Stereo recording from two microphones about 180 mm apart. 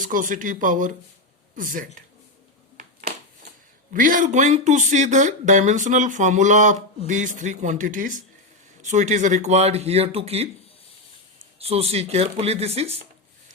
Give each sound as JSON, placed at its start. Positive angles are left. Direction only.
{"t": 0.0, "sound": "speech", "side_deg": -50}
{"t": 2.7, "sound": "a sound", "side_deg": -45}
{"t": 3.9, "sound": "speech", "side_deg": -50}
{"t": 11.6, "sound": "speech", "side_deg": -35}